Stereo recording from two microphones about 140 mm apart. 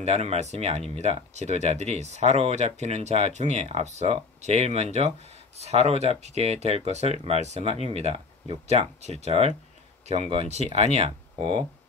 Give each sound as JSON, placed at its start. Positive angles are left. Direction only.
{"t": 0.0, "sound": "speech", "side_deg": -50}